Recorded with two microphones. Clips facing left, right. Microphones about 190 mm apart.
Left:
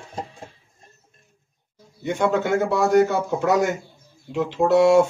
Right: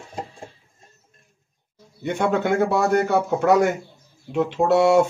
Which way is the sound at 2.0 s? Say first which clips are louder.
Even; 60° right (ahead or behind).